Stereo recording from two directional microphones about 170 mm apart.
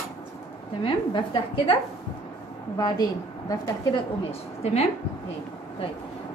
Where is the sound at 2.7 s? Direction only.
20° left (ahead or behind).